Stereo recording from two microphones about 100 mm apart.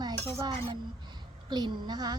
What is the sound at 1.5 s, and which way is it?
Speech, 50° right (ahead or behind).